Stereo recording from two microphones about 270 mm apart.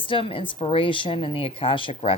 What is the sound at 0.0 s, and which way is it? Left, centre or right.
Speech, centre.